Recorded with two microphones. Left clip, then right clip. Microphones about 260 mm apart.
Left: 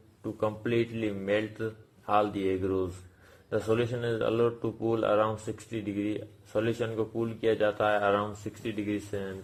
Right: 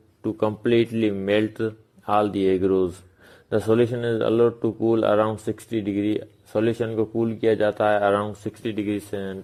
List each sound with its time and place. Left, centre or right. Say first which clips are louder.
0.2 s speech: right 7 dB; right